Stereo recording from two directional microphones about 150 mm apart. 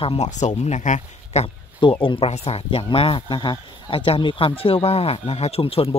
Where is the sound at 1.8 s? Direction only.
35° left (ahead or behind).